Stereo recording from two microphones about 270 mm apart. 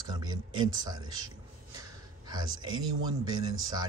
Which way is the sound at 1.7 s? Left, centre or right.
Centre.